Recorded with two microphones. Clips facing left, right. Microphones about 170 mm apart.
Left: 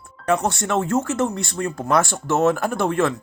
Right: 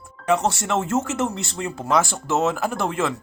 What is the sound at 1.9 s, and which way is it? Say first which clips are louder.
Speech: left 1 dB; centre (ahead or behind).